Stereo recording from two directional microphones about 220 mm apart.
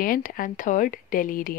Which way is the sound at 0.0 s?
40° left (ahead or behind).